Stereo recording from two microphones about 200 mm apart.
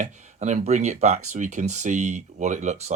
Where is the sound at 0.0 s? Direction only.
35° right (ahead or behind).